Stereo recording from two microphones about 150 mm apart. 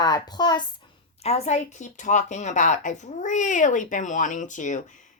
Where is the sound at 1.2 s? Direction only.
45° left (ahead or behind).